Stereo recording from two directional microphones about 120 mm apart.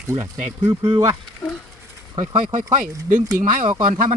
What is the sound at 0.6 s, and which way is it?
Speech, 35° right (ahead or behind).